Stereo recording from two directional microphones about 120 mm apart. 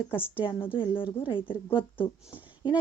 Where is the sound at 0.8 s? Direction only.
45° left (ahead or behind).